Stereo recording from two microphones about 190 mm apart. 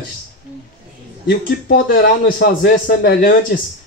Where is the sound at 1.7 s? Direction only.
50° left (ahead or behind).